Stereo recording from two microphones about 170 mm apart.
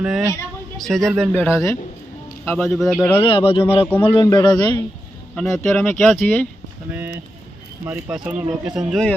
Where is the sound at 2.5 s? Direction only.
Centre (ahead or behind).